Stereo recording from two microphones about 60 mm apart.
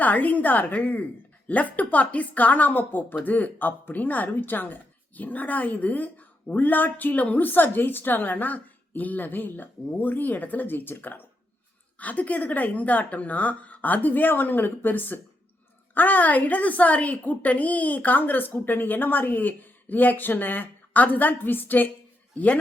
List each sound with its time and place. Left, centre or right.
0.0 s speech: left